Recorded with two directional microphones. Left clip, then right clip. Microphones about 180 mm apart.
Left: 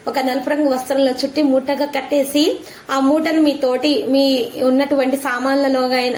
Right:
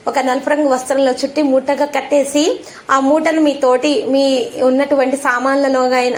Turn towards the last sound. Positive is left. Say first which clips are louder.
# right 3 dB
turn(degrees=15)  # may be behind; listen again after turning